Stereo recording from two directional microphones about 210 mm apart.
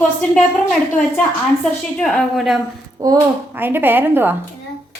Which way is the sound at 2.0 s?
Centre (ahead or behind).